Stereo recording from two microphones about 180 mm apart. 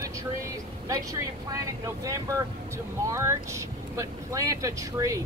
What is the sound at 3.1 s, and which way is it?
Speech, 15° right (ahead or behind).